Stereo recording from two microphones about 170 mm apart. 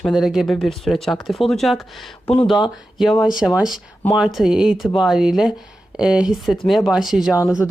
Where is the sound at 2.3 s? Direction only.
35° left (ahead or behind).